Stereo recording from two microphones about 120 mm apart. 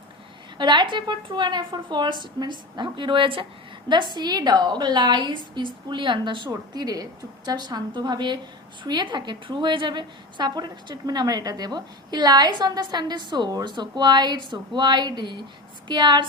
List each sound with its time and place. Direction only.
0.6 s a woman's voice: 40° right (ahead or behind)